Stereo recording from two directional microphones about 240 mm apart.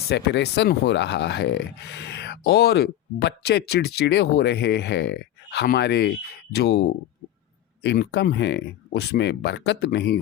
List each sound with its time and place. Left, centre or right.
0.1 s speech: left